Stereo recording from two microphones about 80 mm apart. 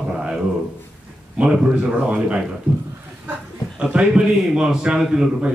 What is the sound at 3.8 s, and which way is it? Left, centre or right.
A man's voice, centre.